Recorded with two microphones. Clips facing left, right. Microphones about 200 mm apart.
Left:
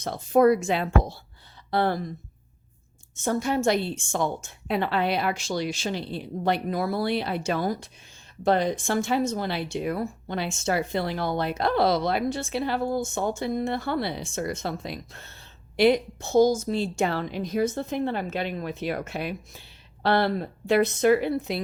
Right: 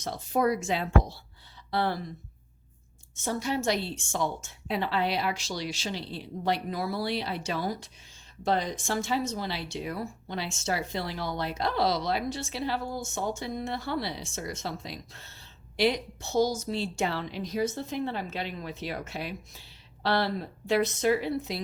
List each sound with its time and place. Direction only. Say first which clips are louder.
0.0 s a woman's voice: left 7 dB; 55° left (ahead or behind)
3.2 s a woman's voice: left 5 dB; 50° left (ahead or behind)